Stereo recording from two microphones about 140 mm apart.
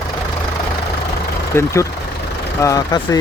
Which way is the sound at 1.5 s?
15° left (ahead or behind).